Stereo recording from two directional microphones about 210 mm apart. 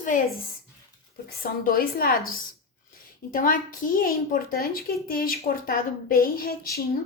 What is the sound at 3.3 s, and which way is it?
A woman's voice, 40° left (ahead or behind).